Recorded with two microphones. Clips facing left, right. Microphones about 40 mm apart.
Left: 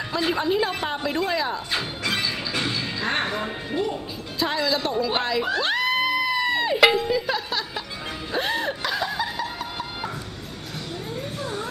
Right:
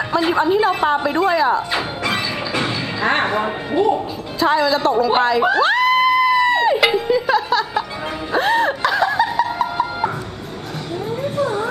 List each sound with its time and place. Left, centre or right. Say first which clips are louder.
0.1 s a woman's voice: right 6 dB; centre
1.7 s music: right 6 dB; centre
4.4 s a woman's voice: right 8 dB; centre
5.6 s music: right 8 dB; centre
8.3 s snicker: right 9 dB; centre
11.3 s a sound: right 12 dB; right